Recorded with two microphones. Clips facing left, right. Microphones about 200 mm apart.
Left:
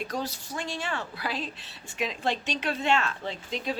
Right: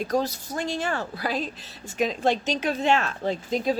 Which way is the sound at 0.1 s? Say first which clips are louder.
Right 7 dB; 45° right (ahead or behind).